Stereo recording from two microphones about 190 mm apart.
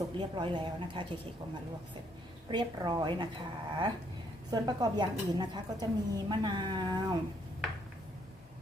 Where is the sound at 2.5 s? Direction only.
25° right (ahead or behind).